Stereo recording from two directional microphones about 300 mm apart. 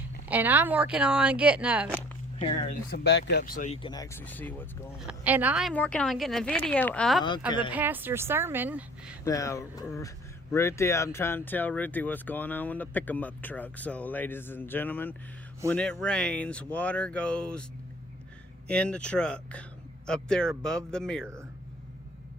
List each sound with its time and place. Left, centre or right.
0.3 s speech: centre
2.4 s speech: centre
2.9 s speech: left; by 5.0 s centre
5.0 s a woman's voice: centre
9.2 s speech: centre
18.7 s speech: centre